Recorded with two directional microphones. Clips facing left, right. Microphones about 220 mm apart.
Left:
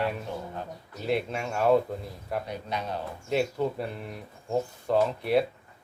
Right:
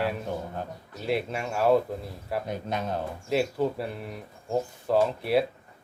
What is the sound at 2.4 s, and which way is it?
Speech, 45° right (ahead or behind).